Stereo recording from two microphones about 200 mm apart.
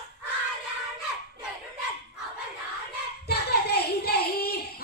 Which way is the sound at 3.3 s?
50° left (ahead or behind).